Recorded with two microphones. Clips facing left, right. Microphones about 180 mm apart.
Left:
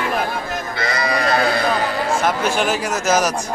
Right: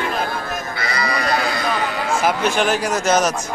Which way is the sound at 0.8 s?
50° left (ahead or behind).